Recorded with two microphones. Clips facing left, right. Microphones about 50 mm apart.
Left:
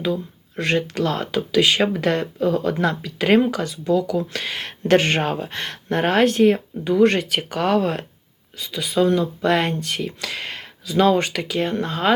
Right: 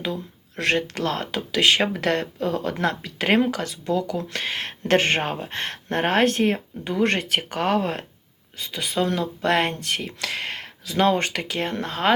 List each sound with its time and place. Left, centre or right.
0.0 s a sound: right
0.6 s speech: right
3.4 s speech: right
8.5 s speech: right
11.7 s speech: right